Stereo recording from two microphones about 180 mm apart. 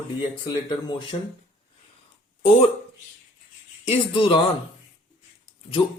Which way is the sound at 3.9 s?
30° left (ahead or behind).